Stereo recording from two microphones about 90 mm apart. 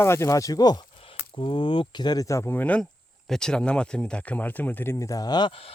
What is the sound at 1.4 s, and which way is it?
Speech, 70° left (ahead or behind).